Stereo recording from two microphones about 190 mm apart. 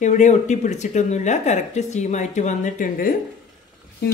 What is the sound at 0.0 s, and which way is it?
Speech, 40° left (ahead or behind).